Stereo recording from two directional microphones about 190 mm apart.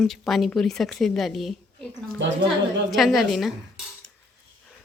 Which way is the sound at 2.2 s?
70° right (ahead or behind).